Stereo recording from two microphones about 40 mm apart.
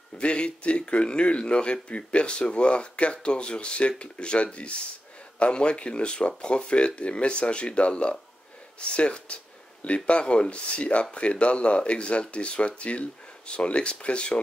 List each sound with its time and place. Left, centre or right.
0.2 s speech: left